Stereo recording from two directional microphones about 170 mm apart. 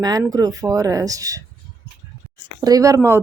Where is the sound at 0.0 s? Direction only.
20° right (ahead or behind).